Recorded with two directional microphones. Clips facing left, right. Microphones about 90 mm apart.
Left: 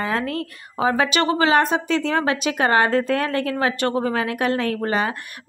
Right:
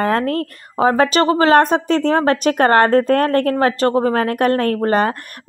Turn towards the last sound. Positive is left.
turn(degrees=-45)  # may be behind; listen again after turning